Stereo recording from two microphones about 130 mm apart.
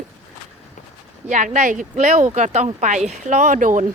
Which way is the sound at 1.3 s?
70° right (ahead or behind).